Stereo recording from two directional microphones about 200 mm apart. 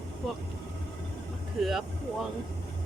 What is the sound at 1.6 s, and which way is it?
Speech, centre (ahead or behind).